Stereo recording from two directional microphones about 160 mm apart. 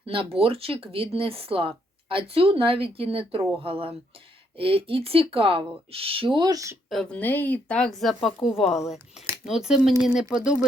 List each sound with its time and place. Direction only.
0.0 s speech: 35° right (ahead or behind)
6.9 s speech: 5° left (ahead or behind)